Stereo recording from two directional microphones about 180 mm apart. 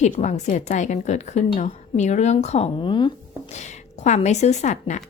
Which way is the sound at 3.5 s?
40° left (ahead or behind).